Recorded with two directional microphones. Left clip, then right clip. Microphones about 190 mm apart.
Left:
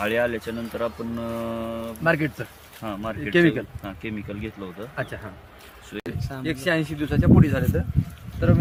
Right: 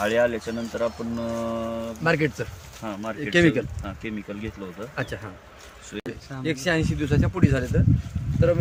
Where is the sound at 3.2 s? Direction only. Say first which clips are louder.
Even; 50° right (ahead or behind).